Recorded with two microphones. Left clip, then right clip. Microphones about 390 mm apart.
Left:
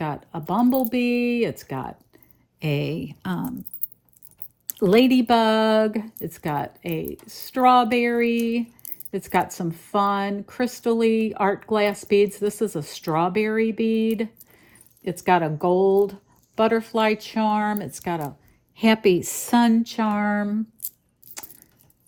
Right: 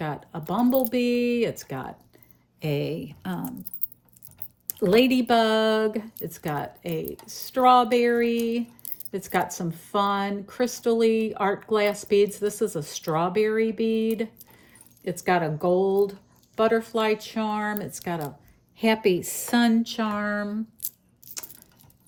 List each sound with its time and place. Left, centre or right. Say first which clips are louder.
0.0 s a sound: left 3 dB; centre
0.9 s a woman's voice: left 1 dB; centre
4.9 s a woman's voice: left 2 dB; centre